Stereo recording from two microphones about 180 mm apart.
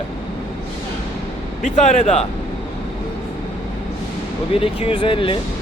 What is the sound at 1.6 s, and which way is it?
Speech, 40° left (ahead or behind).